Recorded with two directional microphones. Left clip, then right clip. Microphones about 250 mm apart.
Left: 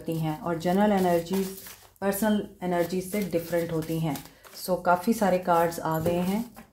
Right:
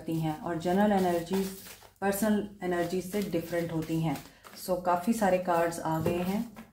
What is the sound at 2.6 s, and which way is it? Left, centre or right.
Speech, left.